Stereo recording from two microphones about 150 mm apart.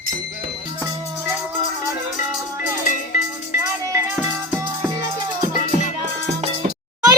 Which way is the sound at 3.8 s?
15° right (ahead or behind).